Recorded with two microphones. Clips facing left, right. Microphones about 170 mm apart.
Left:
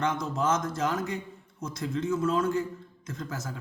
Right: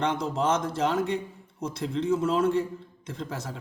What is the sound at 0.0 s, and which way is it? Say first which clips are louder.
A man's voice: right 2 dB; 30° right (ahead or behind).